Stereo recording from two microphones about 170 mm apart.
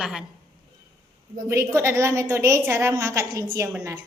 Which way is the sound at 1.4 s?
15° right (ahead or behind).